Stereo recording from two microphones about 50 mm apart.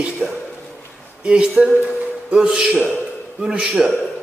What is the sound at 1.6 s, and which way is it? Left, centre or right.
Speech, right.